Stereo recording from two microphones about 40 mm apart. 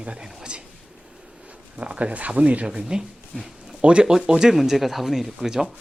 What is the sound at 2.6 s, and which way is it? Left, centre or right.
Speech, right.